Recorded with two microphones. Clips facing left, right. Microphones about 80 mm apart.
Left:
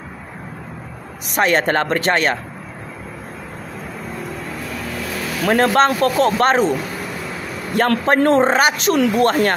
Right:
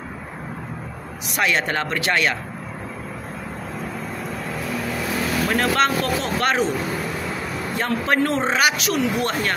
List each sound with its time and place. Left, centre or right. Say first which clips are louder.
1.3 s speech: left 6 dB; left
5.5 s speech: left 7 dB; left
7.7 s a man's voice: left 8 dB; left
8.1 s speech: left 6 dB; left